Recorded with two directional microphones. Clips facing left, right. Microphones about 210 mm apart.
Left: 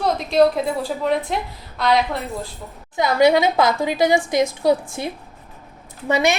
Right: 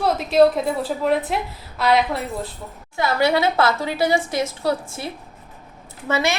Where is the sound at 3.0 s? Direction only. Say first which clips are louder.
Left 4 dB; 15° left (ahead or behind).